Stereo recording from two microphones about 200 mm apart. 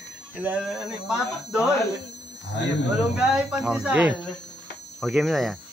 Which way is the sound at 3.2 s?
5° right (ahead or behind).